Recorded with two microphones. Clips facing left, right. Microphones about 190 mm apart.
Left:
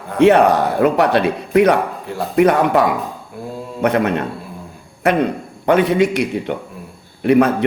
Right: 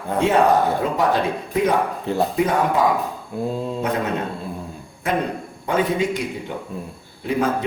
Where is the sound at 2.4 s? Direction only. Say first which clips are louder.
Left 8 dB; 70° left (ahead or behind).